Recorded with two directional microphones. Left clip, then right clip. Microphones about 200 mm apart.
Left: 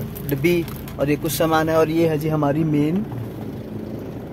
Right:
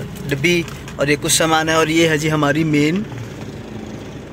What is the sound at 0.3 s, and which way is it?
Speech, 5° left (ahead or behind).